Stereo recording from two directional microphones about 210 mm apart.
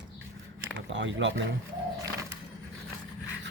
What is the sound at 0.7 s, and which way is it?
Speech, 60° right (ahead or behind).